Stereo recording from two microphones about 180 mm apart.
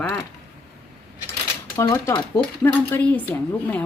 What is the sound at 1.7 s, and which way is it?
Speech, 20° left (ahead or behind).